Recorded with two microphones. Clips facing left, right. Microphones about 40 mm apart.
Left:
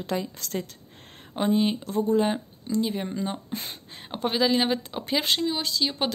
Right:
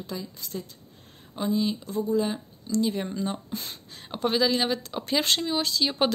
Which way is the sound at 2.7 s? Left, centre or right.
Centre.